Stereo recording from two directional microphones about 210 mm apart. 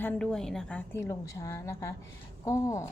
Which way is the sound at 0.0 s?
5° left (ahead or behind).